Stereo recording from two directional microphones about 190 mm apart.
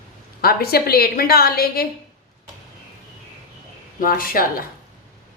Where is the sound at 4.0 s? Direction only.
50° left (ahead or behind).